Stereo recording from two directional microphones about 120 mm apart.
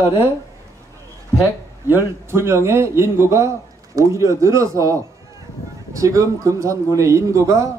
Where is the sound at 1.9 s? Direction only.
20° right (ahead or behind).